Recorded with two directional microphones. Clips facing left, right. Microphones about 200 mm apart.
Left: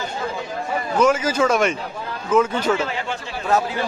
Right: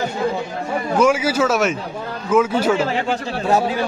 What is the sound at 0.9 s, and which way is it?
Speech, 10° right (ahead or behind).